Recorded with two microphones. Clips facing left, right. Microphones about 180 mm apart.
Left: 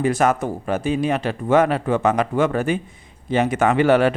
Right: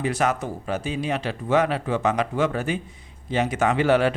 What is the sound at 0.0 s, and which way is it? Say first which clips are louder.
Speech: left 5 dB; 50° left (ahead or behind).